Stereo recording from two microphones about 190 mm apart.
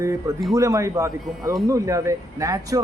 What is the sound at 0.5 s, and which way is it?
A man's voice, 15° right (ahead or behind).